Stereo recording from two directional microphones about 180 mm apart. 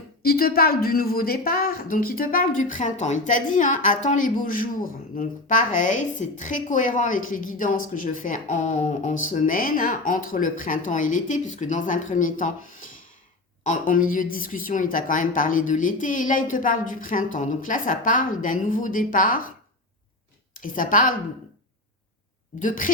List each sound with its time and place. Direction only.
0.3 s a woman's voice: 55° left (ahead or behind)
20.6 s a woman's voice: 50° left (ahead or behind)
22.6 s a woman's voice: 50° left (ahead or behind)